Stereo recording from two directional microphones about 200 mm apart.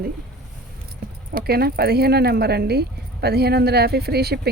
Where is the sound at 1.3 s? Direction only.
50° right (ahead or behind).